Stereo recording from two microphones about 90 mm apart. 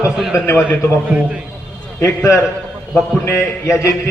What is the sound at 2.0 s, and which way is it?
A man's voice, 30° left (ahead or behind).